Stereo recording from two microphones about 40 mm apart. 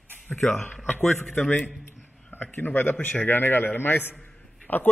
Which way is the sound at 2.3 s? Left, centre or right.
Left.